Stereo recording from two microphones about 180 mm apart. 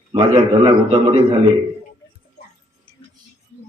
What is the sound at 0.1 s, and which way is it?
A man's voice, 30° right (ahead or behind).